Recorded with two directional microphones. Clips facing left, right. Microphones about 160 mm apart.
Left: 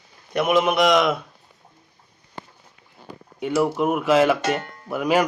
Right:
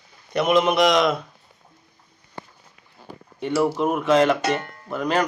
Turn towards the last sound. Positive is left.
turn(degrees=10)  # may be behind; listen again after turning